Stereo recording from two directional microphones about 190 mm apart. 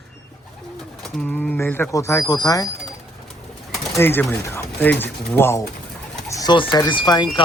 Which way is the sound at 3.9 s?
10° left (ahead or behind).